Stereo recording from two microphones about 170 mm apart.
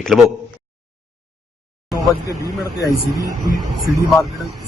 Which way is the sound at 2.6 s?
20° left (ahead or behind).